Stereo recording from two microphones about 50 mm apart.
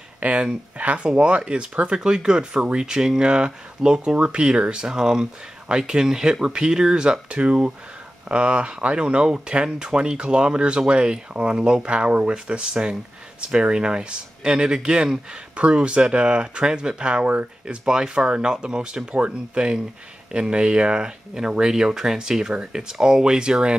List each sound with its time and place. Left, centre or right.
0.2 s speech: right